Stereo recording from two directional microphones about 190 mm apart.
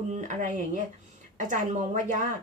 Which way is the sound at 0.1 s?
40° right (ahead or behind).